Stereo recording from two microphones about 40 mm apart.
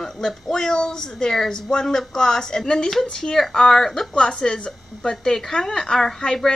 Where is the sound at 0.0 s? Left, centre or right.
Centre.